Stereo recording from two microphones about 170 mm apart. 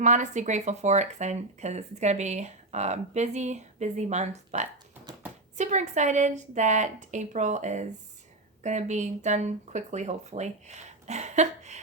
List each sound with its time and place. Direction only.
0.0 s speech: 45° right (ahead or behind)